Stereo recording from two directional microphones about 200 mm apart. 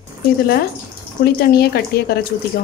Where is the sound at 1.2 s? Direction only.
50° left (ahead or behind).